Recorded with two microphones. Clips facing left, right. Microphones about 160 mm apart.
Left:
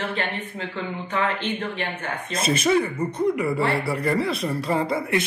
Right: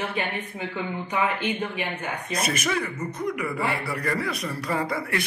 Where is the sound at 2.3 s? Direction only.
25° left (ahead or behind).